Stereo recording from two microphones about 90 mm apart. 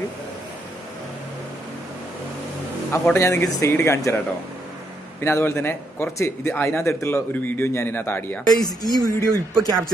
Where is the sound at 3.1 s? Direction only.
30° left (ahead or behind).